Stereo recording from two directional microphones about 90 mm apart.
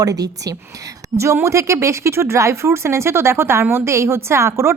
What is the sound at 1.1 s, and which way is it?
Speech, 30° right (ahead or behind).